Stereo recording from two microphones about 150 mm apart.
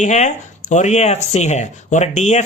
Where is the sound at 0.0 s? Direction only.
50° left (ahead or behind).